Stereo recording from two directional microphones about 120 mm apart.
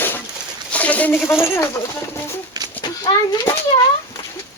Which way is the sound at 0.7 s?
10° left (ahead or behind).